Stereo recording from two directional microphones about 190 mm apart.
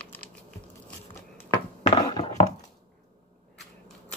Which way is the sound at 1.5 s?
25° left (ahead or behind).